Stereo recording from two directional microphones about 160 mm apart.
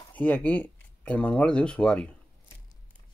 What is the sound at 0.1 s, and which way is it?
Speech, 10° left (ahead or behind).